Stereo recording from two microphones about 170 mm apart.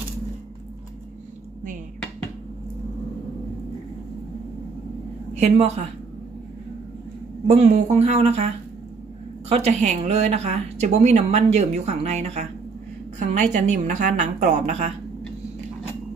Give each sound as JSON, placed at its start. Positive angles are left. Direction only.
{"t": 5.3, "sound": "a woman's voice", "side_deg": -40}
{"t": 7.4, "sound": "speech", "side_deg": -40}
{"t": 9.5, "sound": "a woman's voice", "side_deg": -40}